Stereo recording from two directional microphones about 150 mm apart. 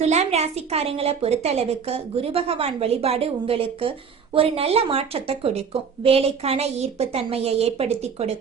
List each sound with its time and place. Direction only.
0.0 s a woman's voice: 50° right (ahead or behind)